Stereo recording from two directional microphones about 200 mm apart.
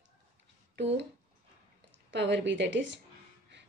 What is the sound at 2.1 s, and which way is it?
Speech, 60° right (ahead or behind).